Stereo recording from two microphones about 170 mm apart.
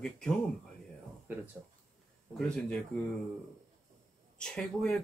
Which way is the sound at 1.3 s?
10° right (ahead or behind).